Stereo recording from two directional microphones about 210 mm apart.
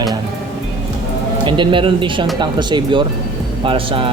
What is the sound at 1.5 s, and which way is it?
Speech, 25° right (ahead or behind).